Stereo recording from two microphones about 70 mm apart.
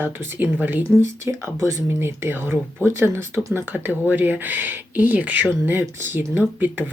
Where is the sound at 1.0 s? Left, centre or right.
Right.